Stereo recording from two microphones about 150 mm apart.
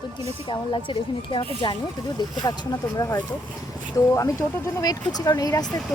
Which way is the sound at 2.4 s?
25° left (ahead or behind).